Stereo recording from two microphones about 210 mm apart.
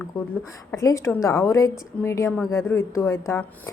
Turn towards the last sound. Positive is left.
turn(degrees=10)  # may be behind; listen again after turning